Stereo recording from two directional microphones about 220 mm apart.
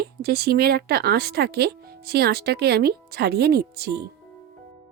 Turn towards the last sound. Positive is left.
turn(degrees=-45)  # may be behind; listen again after turning